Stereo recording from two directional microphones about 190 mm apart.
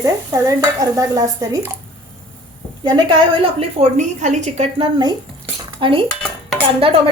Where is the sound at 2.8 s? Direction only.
25° right (ahead or behind).